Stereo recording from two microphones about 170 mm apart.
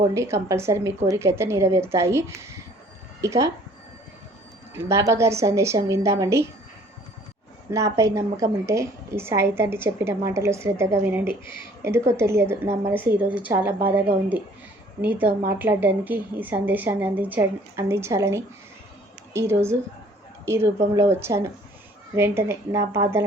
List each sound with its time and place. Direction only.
0.1 s a woman's voice: 15° right (ahead or behind)
4.7 s a woman's voice: 15° right (ahead or behind)
7.7 s a woman's voice: 20° right (ahead or behind)
15.4 s a woman's voice: 10° right (ahead or behind)